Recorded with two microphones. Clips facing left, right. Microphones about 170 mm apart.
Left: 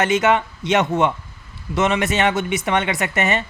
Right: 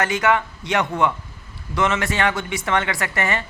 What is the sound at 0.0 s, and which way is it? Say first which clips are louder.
Speech: left 3 dB; 20° left (ahead or behind).